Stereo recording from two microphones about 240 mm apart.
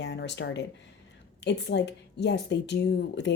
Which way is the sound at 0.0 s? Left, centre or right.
Left.